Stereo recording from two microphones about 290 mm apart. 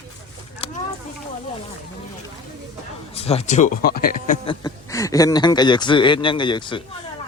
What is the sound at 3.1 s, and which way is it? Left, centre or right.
Speech, left.